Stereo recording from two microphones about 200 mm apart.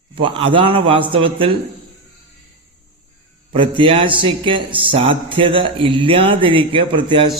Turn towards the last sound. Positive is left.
turn(degrees=-25)  # may be behind; listen again after turning